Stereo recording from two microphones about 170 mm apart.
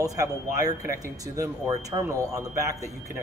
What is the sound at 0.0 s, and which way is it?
A man's voice, 20° right (ahead or behind).